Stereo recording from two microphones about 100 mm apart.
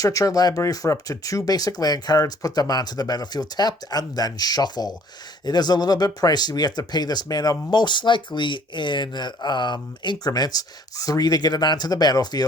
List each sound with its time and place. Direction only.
0.0 s speech: 35° left (ahead or behind)